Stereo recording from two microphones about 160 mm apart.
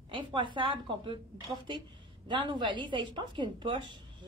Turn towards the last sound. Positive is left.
turn(degrees=-30)  # may be behind; listen again after turning